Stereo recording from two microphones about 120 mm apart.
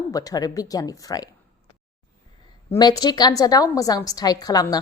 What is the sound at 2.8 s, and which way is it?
Speech, 35° left (ahead or behind).